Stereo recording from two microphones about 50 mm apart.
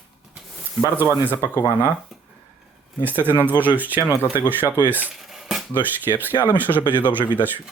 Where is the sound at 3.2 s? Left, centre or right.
Right.